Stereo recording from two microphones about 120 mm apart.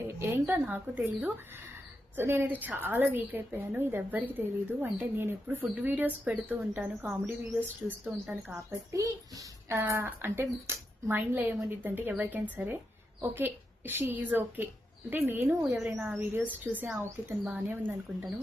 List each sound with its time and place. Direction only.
0.2 s a woman's voice: 20° right (ahead or behind)
8.9 s a child's voice: 30° right (ahead or behind)